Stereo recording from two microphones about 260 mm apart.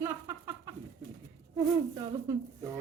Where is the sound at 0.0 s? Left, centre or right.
Centre.